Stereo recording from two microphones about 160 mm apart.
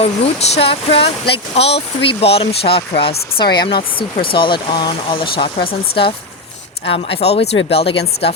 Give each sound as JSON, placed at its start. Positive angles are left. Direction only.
{"t": 0.0, "sound": "speech", "side_deg": 40}
{"t": 6.8, "sound": "speech", "side_deg": 35}